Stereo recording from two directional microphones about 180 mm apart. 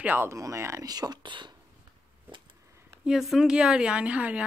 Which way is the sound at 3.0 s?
5° right (ahead or behind).